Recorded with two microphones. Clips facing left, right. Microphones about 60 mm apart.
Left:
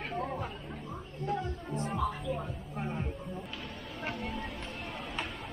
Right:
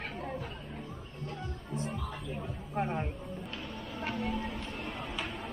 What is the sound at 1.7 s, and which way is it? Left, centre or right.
Music, left.